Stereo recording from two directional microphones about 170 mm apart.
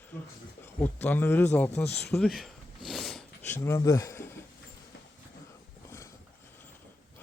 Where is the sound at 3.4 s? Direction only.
15° left (ahead or behind).